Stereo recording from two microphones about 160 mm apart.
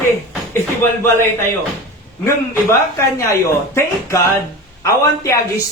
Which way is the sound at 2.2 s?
15° left (ahead or behind).